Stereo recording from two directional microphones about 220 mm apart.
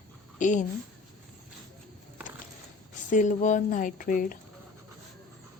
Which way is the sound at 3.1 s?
35° left (ahead or behind).